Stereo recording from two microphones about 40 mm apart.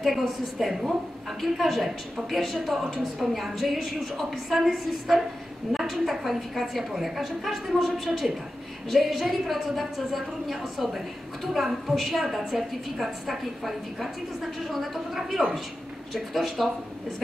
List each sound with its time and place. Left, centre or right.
0.0 s a woman's voice: centre